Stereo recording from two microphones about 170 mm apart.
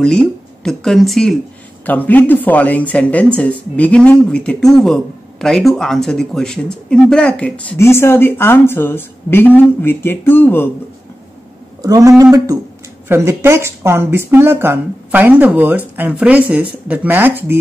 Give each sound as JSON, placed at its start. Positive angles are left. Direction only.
{"t": 0.0, "sound": "speech", "side_deg": 5}
{"t": 11.8, "sound": "speech", "side_deg": -20}